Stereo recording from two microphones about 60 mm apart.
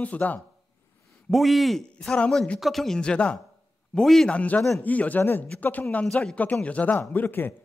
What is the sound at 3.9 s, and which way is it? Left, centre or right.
Speech, centre.